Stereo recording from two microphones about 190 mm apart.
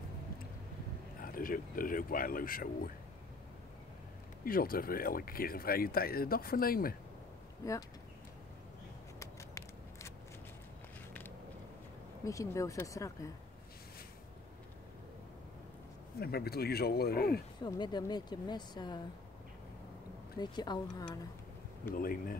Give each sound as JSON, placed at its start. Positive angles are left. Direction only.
{"t": 1.2, "sound": "speech", "side_deg": 50}
{"t": 4.5, "sound": "speech", "side_deg": 50}
{"t": 9.2, "sound": "a sound", "side_deg": 15}
{"t": 12.3, "sound": "speech", "side_deg": 15}
{"t": 16.2, "sound": "speech", "side_deg": 55}
{"t": 17.6, "sound": "speech", "side_deg": 20}
{"t": 20.3, "sound": "speech", "side_deg": 20}
{"t": 21.9, "sound": "speech", "side_deg": 50}